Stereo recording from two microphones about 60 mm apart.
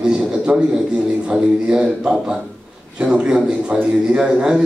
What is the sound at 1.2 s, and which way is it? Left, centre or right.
A man's voice, centre.